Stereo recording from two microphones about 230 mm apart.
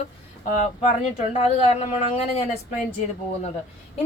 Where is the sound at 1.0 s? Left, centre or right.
Left.